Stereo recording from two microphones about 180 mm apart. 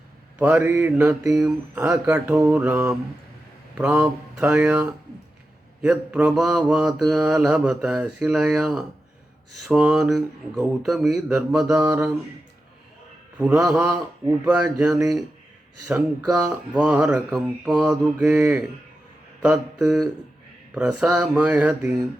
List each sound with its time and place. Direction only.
0.3 s mantra: 10° right (ahead or behind)
11.3 s mantra: 10° right (ahead or behind)
13.5 s mantra: 15° right (ahead or behind)